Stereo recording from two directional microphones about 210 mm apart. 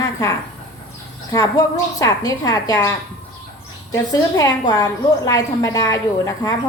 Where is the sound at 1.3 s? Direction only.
15° left (ahead or behind).